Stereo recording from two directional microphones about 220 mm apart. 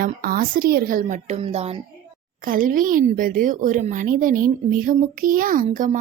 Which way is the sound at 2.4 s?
40° right (ahead or behind).